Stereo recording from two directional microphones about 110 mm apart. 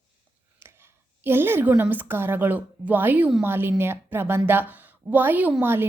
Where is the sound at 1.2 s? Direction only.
20° right (ahead or behind).